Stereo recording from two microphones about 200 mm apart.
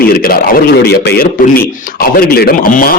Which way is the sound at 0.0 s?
50° left (ahead or behind).